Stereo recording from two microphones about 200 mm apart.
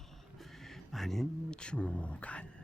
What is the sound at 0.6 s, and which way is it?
Speech, centre (ahead or behind).